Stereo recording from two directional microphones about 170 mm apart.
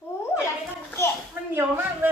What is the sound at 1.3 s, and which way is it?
Speech, 10° right (ahead or behind).